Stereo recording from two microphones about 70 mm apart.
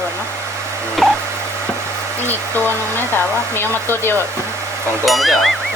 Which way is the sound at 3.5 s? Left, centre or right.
Left.